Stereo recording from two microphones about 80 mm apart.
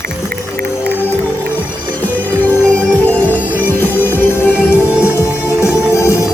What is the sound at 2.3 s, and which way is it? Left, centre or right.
Music, left.